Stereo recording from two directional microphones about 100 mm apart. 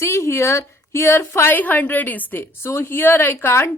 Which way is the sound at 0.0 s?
30° left (ahead or behind).